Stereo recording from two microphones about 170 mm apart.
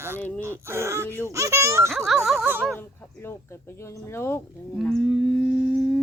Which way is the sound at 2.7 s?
15° left (ahead or behind).